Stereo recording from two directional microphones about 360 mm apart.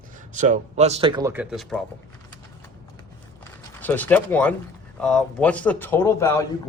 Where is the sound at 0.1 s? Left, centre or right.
Right; by 1.8 s centre.